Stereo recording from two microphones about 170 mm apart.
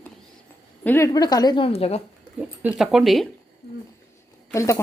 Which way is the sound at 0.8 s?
15° left (ahead or behind).